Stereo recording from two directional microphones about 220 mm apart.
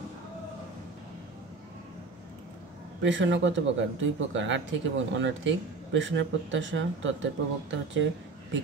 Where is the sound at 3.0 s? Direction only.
55° right (ahead or behind).